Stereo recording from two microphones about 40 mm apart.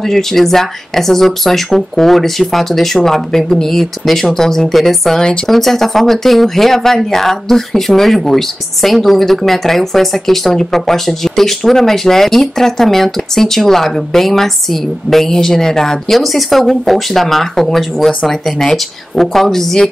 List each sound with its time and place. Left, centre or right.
0.0 s speech: centre
16.2 s speech: centre